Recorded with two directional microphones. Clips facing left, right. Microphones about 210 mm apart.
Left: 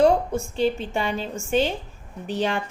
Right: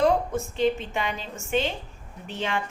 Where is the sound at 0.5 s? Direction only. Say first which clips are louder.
Left 1 dB; 35° left (ahead or behind).